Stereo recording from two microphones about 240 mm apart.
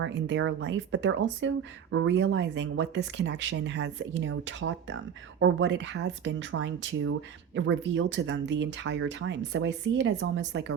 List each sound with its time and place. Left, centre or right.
0.0 s speech: right